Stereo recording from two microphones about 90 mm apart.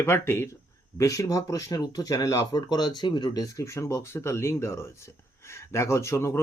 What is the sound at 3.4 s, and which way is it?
Speech, 35° left (ahead or behind).